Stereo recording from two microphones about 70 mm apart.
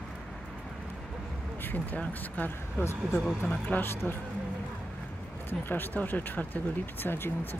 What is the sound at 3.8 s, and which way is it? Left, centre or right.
Speech, left.